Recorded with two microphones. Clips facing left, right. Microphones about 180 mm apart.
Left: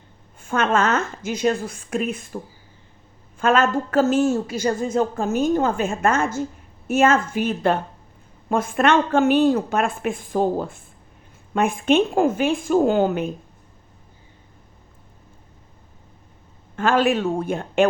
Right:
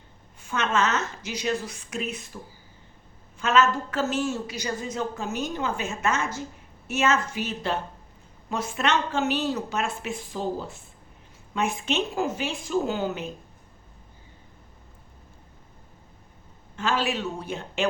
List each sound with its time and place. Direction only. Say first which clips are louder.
0.3 s a woman's voice: left 5 dB; 50° left (ahead or behind)
16.7 s a woman's voice: left 8 dB; 55° left (ahead or behind)